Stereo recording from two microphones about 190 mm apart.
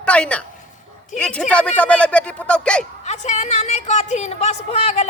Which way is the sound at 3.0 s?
35° left (ahead or behind).